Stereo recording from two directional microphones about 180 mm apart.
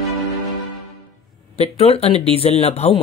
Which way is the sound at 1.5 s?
35° left (ahead or behind).